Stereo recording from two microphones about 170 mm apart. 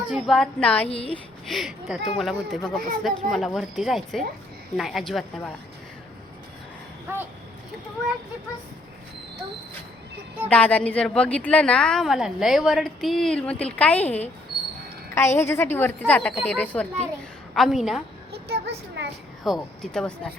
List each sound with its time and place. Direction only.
0.1 s a woman's voice: centre (ahead or behind)
0.9 s a woman's voice: 35° left (ahead or behind)
1.5 s a woman's voice: centre (ahead or behind)
7.1 s speech: 15° right (ahead or behind)
10.5 s a woman's voice: 10° left (ahead or behind)
18.3 s a sound: 75° right (ahead or behind)
19.5 s a woman's voice: centre (ahead or behind)